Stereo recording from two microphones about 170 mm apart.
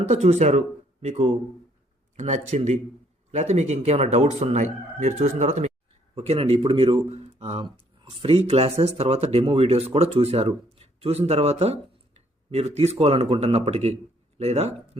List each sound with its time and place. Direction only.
0.0 s speech: 40° right (ahead or behind)